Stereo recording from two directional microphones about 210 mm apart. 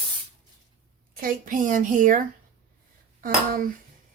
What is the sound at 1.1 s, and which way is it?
A woman's voice, 40° right (ahead or behind).